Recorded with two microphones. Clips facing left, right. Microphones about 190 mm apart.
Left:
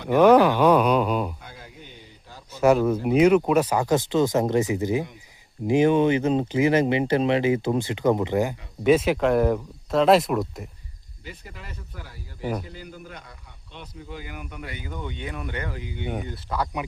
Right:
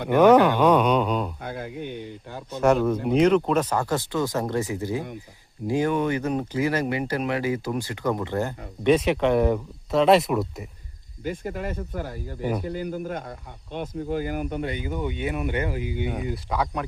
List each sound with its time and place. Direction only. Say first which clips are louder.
0.1 s speech: even; centre (ahead or behind)
1.4 s speech: right 12 dB; 60° right (ahead or behind)
2.6 s speech: left 1 dB; 5° left (ahead or behind)
11.2 s speech: right 13 dB; 50° right (ahead or behind)
14.6 s speech: right 7 dB; 20° right (ahead or behind)
16.3 s speech: right 2 dB; centre (ahead or behind)